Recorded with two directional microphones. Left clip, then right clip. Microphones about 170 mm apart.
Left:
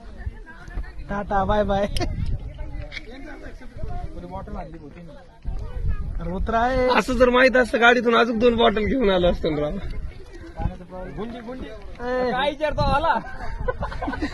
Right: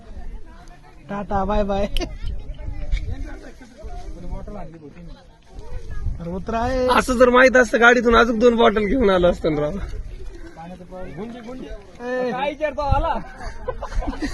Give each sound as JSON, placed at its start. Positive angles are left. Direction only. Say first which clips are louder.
{"t": 1.0, "sound": "speech", "louder": "left 1 dB", "side_deg": -50}
{"t": 6.1, "sound": "a man's voice", "louder": "left 2 dB", "side_deg": -45}
{"t": 6.8, "sound": "a man's voice", "louder": "right 6 dB", "side_deg": -35}
{"t": 11.2, "sound": "a man's voice", "louder": "left 2 dB", "side_deg": -45}